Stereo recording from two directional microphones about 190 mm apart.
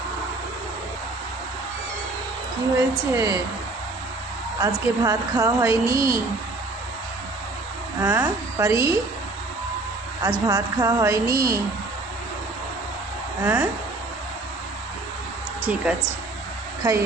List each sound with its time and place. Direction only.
3.1 s a woman's voice: 15° right (ahead or behind)
4.6 s a woman's voice: 15° right (ahead or behind)
8.0 s a woman's voice: 15° right (ahead or behind)
10.2 s a woman's voice: 15° right (ahead or behind)
13.4 s a woman's voice: 10° right (ahead or behind)
15.6 s a woman's voice: 5° right (ahead or behind)